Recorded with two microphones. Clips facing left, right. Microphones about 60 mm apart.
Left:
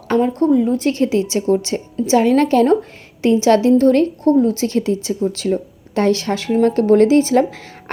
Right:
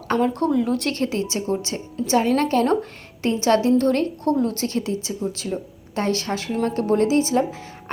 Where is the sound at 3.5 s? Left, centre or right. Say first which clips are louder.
Left 4 dB; left.